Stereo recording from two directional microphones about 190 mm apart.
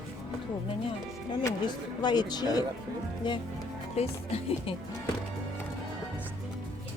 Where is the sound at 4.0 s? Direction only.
35° left (ahead or behind).